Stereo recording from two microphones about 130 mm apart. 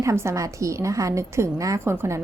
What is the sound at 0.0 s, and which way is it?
A woman's voice, 20° right (ahead or behind).